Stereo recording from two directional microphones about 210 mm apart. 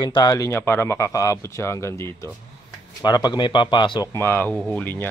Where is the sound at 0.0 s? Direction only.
20° left (ahead or behind).